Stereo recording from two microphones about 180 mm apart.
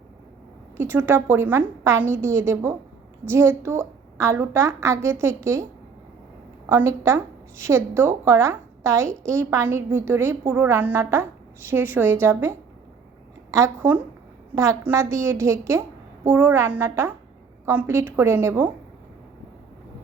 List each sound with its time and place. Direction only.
0.8 s a woman's voice: 10° right (ahead or behind)
6.7 s a woman's voice: 15° right (ahead or behind)